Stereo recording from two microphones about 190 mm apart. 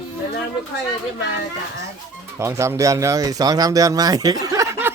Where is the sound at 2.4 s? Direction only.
15° right (ahead or behind).